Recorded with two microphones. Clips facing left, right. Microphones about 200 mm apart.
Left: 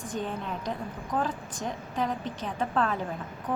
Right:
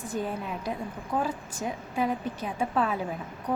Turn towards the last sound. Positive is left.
turn(degrees=-10)  # may be behind; listen again after turning